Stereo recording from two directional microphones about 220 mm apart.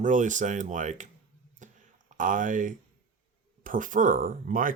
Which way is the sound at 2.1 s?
35° right (ahead or behind).